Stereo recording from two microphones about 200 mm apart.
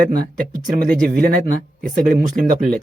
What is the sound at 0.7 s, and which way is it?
Speech, 45° right (ahead or behind).